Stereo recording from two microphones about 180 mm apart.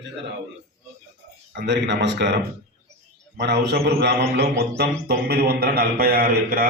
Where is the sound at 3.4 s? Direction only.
65° right (ahead or behind).